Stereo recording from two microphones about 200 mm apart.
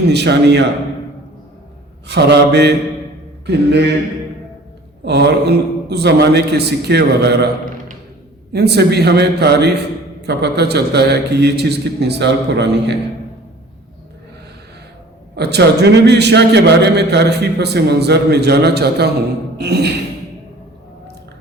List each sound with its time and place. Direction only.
0.1 s a man's voice: 60° right (ahead or behind)
2.0 s a man's voice: 55° right (ahead or behind)
5.0 s a man's voice: 55° right (ahead or behind)
15.4 s a man's voice: 55° right (ahead or behind)